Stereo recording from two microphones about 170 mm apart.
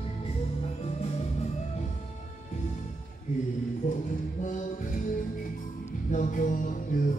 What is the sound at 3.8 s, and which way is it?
Music, 50° left (ahead or behind).